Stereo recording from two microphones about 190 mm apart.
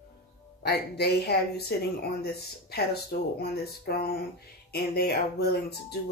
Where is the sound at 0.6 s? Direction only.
60° left (ahead or behind).